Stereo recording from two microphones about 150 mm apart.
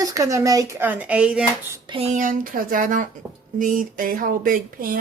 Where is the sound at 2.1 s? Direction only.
60° right (ahead or behind).